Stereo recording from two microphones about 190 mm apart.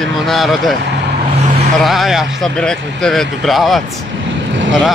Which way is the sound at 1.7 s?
Centre (ahead or behind).